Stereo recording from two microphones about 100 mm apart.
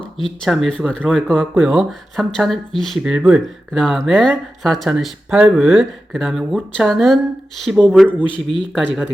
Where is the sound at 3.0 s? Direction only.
10° right (ahead or behind).